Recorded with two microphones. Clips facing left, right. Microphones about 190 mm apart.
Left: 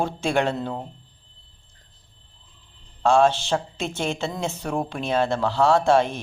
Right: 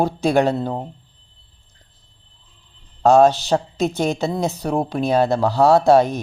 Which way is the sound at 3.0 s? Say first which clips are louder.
Right 5 dB; 40° right (ahead or behind).